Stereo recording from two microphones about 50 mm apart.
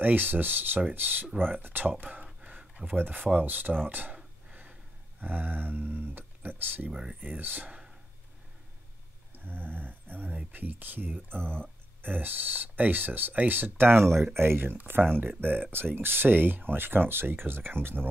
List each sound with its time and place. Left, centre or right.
0.0 s speech: right
2.7 s a sound: right
3.0 s speech: right
5.2 s speech: right
6.9 s speech: centre
7.2 s speech: right
9.4 s speech: right
11.3 s speech: centre
11.6 s speech: right